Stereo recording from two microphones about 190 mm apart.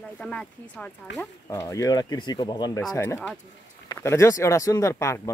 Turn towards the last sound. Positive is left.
turn(degrees=15)  # may be behind; listen again after turning